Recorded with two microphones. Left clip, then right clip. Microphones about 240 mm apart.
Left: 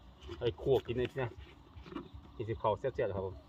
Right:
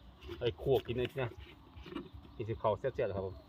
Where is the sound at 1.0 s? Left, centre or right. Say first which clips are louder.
Even; centre.